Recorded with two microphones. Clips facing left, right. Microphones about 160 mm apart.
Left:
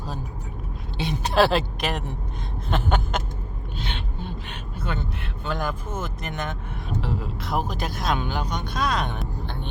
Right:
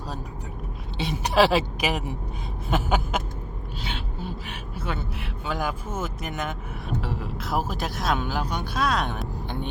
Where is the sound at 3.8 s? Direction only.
5° right (ahead or behind).